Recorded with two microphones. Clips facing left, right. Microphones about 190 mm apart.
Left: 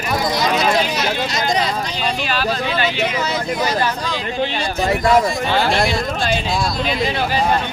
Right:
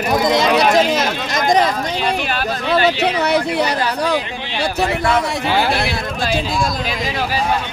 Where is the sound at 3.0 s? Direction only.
65° right (ahead or behind).